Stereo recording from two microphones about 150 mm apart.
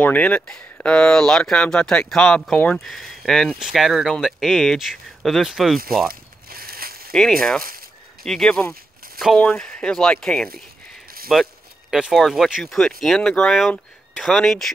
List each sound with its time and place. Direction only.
0.0 s speech: 10° left (ahead or behind)
6.0 s a sound: 80° right
7.1 s speech: 5° left (ahead or behind)